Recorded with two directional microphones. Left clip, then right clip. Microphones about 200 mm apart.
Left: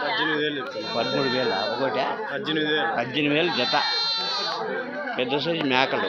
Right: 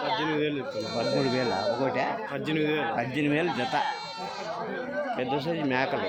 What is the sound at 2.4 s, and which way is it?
Speech, 70° right (ahead or behind).